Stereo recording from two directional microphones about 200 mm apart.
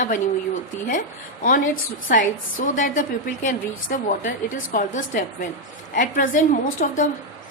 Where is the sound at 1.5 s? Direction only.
40° left (ahead or behind).